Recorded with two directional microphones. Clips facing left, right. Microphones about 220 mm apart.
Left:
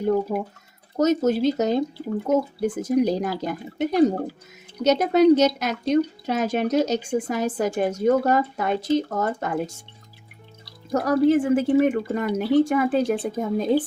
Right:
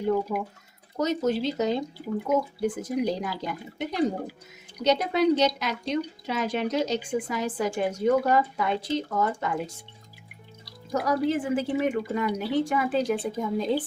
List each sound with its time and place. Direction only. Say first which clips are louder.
0.1 s speech: left 3 dB; 40° left (ahead or behind)
10.9 s speech: left 7 dB; 50° left (ahead or behind)